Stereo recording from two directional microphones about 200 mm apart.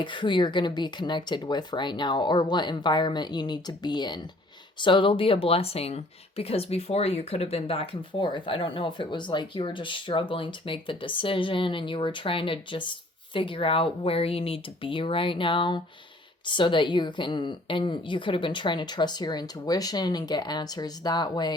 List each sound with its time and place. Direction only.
0.0 s speech: 25° left (ahead or behind)